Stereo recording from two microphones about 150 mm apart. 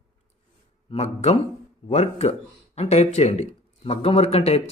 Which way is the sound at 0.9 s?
45° left (ahead or behind).